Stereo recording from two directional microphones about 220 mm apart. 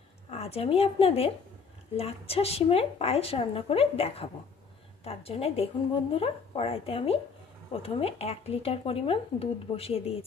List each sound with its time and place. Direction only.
0.3 s speech: 25° left (ahead or behind)